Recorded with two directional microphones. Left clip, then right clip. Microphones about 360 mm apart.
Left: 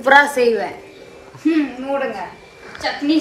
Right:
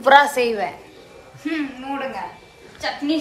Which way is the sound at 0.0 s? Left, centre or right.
Centre.